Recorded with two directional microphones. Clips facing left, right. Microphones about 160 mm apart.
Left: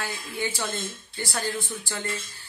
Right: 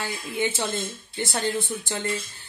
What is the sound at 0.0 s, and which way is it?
Speech, 20° right (ahead or behind).